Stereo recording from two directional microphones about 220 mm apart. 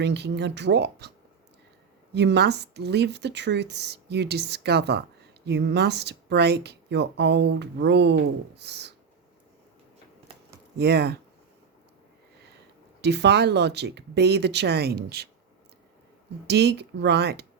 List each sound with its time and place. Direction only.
0.0 s speech: 50° right (ahead or behind)
2.1 s speech: 50° right (ahead or behind)
10.8 s speech: 45° right (ahead or behind)
13.0 s speech: 50° right (ahead or behind)
16.5 s speech: 50° right (ahead or behind)